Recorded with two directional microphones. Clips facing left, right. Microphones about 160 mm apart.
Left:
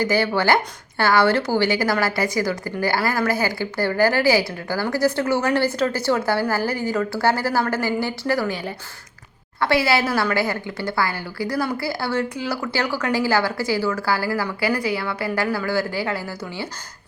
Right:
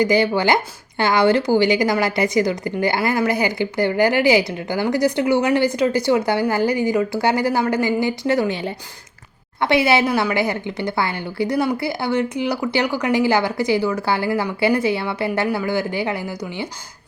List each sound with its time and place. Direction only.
0.0 s speech: 15° right (ahead or behind)